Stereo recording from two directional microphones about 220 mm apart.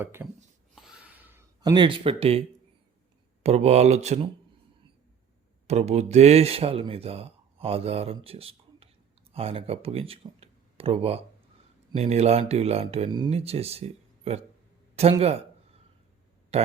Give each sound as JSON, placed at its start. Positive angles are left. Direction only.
{"t": 0.0, "sound": "speech", "side_deg": -10}
{"t": 0.8, "sound": "a sound", "side_deg": -5}
{"t": 3.4, "sound": "speech", "side_deg": -30}
{"t": 5.6, "sound": "speech", "side_deg": -30}
{"t": 16.5, "sound": "speech", "side_deg": -30}